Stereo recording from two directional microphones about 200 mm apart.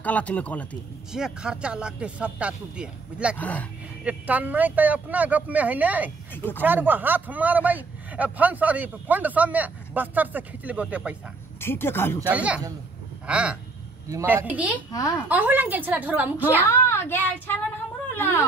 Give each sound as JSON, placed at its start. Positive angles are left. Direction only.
{"t": 0.0, "sound": "a woman's voice", "side_deg": 5}
{"t": 1.1, "sound": "speech", "side_deg": -5}
{"t": 3.3, "sound": "a woman's voice", "side_deg": 5}
{"t": 4.0, "sound": "a man's voice", "side_deg": -5}
{"t": 6.3, "sound": "a woman's voice", "side_deg": 10}
{"t": 6.6, "sound": "a man's voice", "side_deg": -10}
{"t": 11.6, "sound": "a woman's voice", "side_deg": 10}
{"t": 12.3, "sound": "a man's voice", "side_deg": -5}
{"t": 14.9, "sound": "a woman's voice", "side_deg": 15}
{"t": 15.2, "sound": "a man's voice", "side_deg": -10}
{"t": 16.6, "sound": "a woman's voice", "side_deg": 15}